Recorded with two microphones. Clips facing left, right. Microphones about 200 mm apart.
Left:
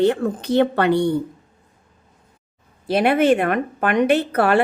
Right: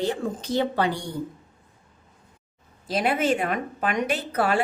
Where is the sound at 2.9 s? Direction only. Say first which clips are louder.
Left 7 dB; 60° left (ahead or behind).